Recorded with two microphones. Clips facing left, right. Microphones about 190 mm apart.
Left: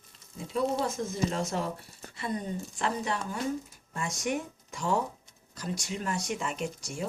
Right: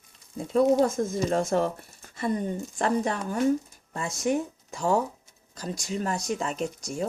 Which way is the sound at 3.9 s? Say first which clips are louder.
Right 5 dB; 35° right (ahead or behind).